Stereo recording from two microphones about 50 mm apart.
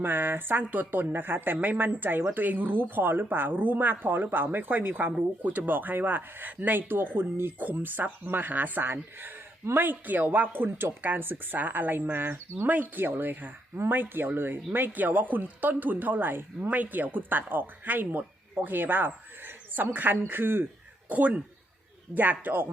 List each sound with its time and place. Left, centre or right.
0.0 s speech: right
16.6 s speech: right
21.1 s speech: right